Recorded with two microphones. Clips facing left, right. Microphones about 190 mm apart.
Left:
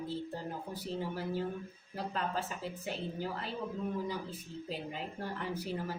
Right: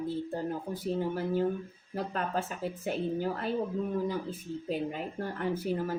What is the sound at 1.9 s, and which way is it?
A woman's voice, 50° right (ahead or behind).